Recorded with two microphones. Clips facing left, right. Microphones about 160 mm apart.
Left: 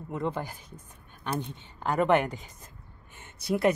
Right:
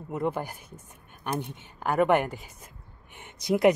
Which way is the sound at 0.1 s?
10° right (ahead or behind).